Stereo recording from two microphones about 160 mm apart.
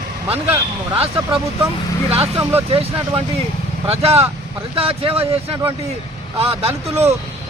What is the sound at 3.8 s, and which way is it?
Speech, 40° right (ahead or behind).